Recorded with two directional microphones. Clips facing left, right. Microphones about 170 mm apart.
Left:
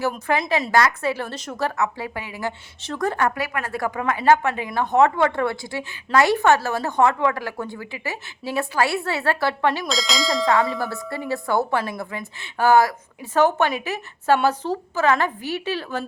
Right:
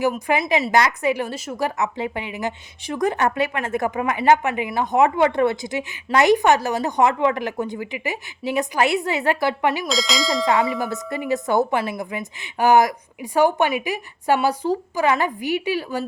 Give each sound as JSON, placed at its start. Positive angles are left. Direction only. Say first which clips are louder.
{"t": 0.0, "sound": "a woman's voice", "louder": "right 2 dB", "side_deg": -15}
{"t": 9.8, "sound": "speech", "louder": "right 1 dB", "side_deg": 0}
{"t": 10.7, "sound": "a woman's voice", "louder": "right 2 dB", "side_deg": -20}